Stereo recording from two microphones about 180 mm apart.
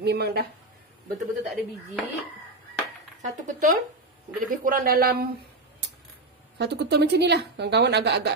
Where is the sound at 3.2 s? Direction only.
40° right (ahead or behind).